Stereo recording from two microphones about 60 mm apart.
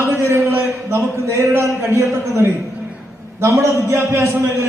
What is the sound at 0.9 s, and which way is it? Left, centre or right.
A man's voice, right.